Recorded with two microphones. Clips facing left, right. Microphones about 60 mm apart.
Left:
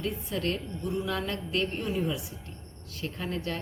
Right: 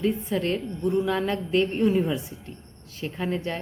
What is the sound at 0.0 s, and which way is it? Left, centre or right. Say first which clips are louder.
A woman's voice: right 6 dB; right.